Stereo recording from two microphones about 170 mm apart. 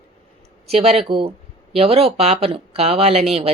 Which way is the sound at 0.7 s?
35° right (ahead or behind).